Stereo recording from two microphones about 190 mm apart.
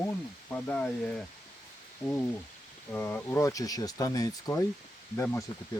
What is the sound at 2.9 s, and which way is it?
Speech, 10° left (ahead or behind).